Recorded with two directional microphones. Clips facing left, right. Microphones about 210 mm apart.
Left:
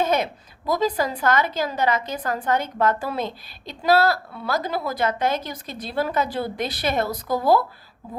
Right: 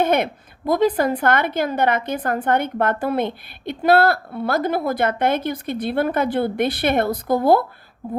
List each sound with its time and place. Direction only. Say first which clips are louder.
0.0 s a woman's voice: right 3 dB; 60° right (ahead or behind)